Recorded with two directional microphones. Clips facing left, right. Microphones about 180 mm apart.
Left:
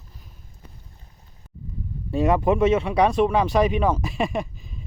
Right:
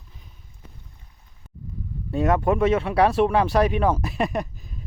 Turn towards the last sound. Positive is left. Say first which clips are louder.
# even
turn(degrees=0)  # may be behind; listen again after turning